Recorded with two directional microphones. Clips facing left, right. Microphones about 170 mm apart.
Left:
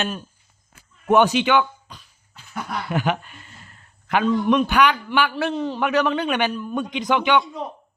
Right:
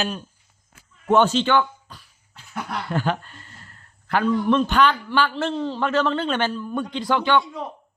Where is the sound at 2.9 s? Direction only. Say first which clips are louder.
Left 1 dB; 15° left (ahead or behind).